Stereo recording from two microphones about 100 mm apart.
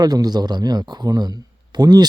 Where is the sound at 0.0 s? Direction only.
40° right (ahead or behind).